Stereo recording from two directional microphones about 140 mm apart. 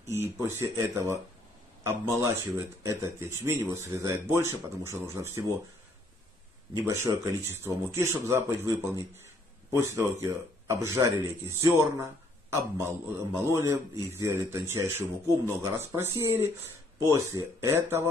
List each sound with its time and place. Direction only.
0.4 s a man's voice: 20° right (ahead or behind)
6.7 s a man's voice: 20° right (ahead or behind)